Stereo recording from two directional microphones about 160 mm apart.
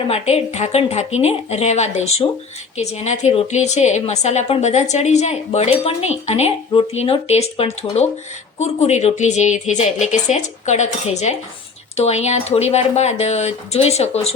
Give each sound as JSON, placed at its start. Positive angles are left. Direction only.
{"t": 0.1, "sound": "a woman's voice", "side_deg": 40}